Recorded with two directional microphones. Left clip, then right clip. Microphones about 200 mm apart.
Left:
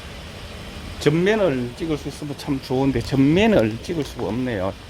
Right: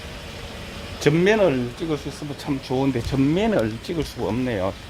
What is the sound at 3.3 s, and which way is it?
Speech, 30° left (ahead or behind).